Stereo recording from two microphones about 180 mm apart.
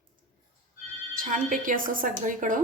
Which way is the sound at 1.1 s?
50° right (ahead or behind).